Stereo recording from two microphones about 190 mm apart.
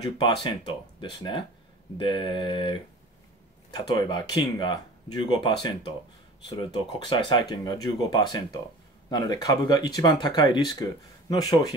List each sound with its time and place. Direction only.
0.0 s speech: 25° left (ahead or behind)
2.0 s speech: 25° left (ahead or behind)
7.1 s speech: 25° left (ahead or behind)